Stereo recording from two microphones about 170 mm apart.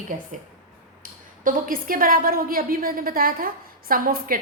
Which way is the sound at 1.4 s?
55° right (ahead or behind).